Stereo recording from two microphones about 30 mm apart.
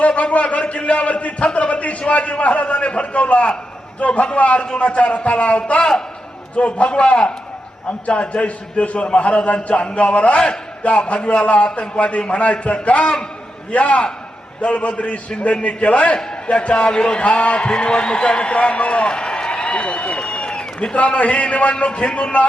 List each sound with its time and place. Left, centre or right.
0.2 s a man's voice: left
7.9 s a man's voice: left
21.2 s a man's voice: left